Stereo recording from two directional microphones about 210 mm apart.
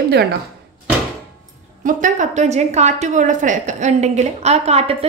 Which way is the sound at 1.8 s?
35° right (ahead or behind).